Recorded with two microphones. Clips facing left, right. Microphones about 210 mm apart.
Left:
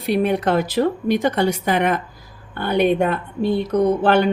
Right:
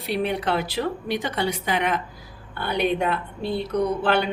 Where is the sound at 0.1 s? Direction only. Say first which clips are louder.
Left 6 dB; 50° left (ahead or behind).